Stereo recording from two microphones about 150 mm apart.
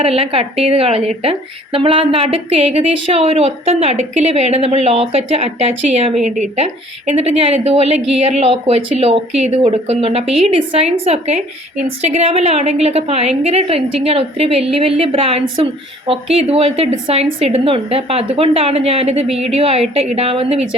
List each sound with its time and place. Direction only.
0.0 s a woman's voice: 40° right (ahead or behind)
6.2 s a woman's voice: 55° right (ahead or behind)